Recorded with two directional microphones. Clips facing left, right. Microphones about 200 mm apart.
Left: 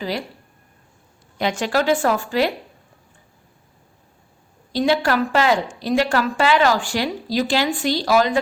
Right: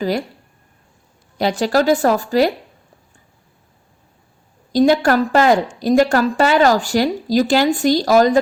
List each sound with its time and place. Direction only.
0.0 s a woman's voice: 45° right (ahead or behind)
1.4 s a woman's voice: 35° right (ahead or behind)
4.7 s a woman's voice: 45° right (ahead or behind)